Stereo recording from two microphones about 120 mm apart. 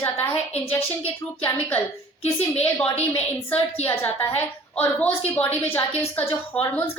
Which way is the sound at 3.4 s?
15° left (ahead or behind).